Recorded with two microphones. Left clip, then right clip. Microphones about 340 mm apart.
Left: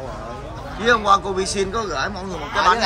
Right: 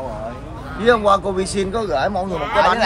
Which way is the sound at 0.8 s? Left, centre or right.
Centre.